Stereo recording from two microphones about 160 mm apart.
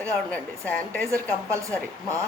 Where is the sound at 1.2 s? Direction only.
20° right (ahead or behind).